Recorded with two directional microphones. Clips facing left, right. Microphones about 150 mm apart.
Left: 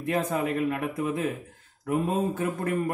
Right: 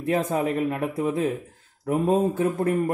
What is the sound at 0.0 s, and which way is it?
A man's voice, 30° right (ahead or behind).